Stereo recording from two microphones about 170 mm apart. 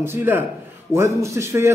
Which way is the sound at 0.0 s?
15° right (ahead or behind).